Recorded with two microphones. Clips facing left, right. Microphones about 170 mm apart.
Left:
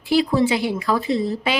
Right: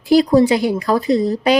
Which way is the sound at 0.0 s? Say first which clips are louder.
Right 6 dB; 40° right (ahead or behind).